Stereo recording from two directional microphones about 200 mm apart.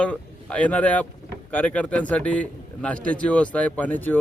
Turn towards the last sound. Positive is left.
turn(degrees=10)  # may be behind; listen again after turning